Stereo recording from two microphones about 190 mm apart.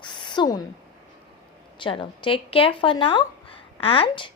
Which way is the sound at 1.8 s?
25° left (ahead or behind).